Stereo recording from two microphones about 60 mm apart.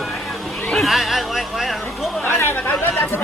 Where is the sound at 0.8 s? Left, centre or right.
Centre.